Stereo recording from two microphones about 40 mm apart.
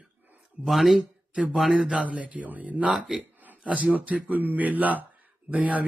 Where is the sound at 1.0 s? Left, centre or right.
Centre.